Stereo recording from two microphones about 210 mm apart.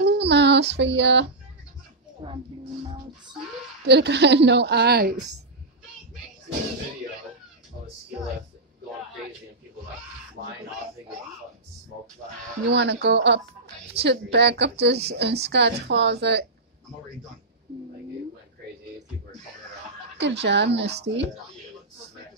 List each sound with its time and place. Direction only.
0.0 s a sound: 55° right (ahead or behind)
2.2 s speech: 20° right (ahead or behind)
3.8 s a woman's voice: 55° right (ahead or behind)
12.6 s a woman's voice: 55° right (ahead or behind)
20.2 s speech: 55° right (ahead or behind)